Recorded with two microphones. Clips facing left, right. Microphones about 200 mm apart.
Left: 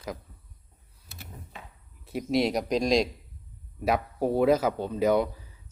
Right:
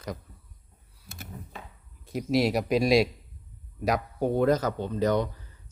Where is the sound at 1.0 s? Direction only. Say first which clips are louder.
Right 3 dB; 50° right (ahead or behind).